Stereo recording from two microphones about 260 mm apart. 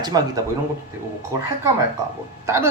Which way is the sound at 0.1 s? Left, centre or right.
Centre.